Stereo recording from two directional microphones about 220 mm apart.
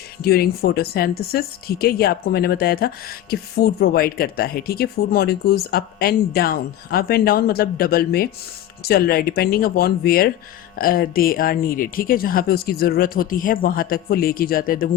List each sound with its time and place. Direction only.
0.2 s speech: 45° left (ahead or behind)